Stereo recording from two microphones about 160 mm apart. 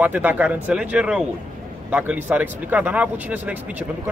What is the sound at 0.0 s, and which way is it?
A man's voice, 10° right (ahead or behind).